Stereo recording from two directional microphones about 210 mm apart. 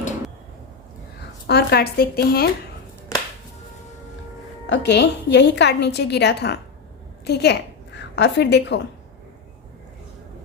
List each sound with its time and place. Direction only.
1.5 s a woman's voice: 50° left (ahead or behind)
4.6 s a woman's voice: 55° left (ahead or behind)